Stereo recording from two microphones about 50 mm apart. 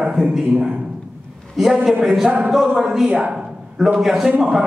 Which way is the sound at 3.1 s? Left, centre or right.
Right.